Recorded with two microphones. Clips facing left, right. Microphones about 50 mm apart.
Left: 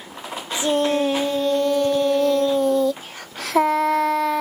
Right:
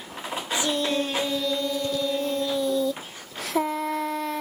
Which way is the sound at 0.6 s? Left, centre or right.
Left.